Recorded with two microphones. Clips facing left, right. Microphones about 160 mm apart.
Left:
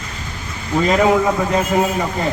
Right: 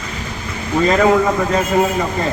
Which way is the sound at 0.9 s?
15° left (ahead or behind).